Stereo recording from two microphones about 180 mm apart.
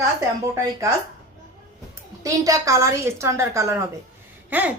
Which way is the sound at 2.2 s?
20° right (ahead or behind).